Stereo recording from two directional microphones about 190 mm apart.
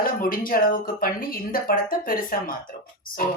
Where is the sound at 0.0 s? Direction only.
50° left (ahead or behind).